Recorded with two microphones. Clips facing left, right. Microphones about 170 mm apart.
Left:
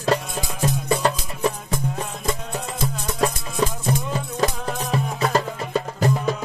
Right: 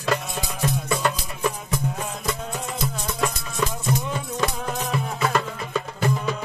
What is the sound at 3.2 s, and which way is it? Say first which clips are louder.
Music: left 4 dB; 35° left (ahead or behind).